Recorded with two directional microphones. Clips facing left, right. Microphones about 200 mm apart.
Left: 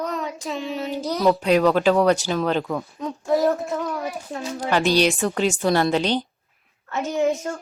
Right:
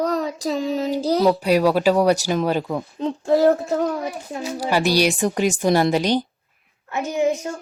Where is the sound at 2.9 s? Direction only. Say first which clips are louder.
Right 4 dB; 30° right (ahead or behind).